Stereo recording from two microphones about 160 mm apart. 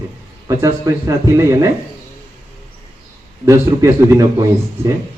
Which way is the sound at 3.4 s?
20° right (ahead or behind).